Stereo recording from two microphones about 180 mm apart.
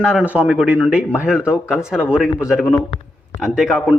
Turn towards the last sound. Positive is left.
turn(degrees=-5)  # may be behind; listen again after turning